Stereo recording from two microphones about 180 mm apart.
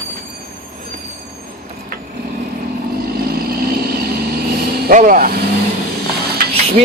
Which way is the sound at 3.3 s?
60° right (ahead or behind).